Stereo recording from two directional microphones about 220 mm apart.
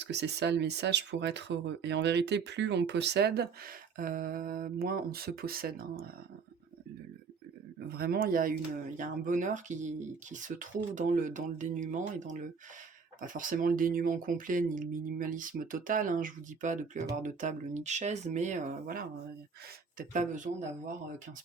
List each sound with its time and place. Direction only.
0.0 s speech: 50° right (ahead or behind)
7.9 s speech: 45° right (ahead or behind)